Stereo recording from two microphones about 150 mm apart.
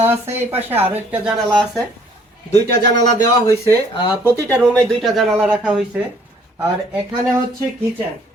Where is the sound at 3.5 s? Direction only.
20° left (ahead or behind).